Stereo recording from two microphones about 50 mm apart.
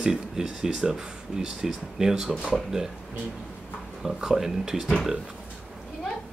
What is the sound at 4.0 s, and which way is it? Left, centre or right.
Speech, centre.